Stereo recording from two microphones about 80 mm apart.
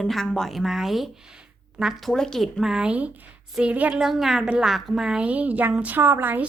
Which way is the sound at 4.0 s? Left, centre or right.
Centre.